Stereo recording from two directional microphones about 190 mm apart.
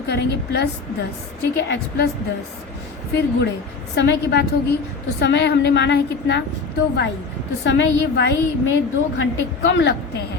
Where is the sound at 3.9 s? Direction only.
65° left (ahead or behind).